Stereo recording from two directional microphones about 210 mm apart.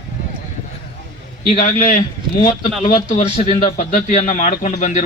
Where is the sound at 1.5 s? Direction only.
30° left (ahead or behind).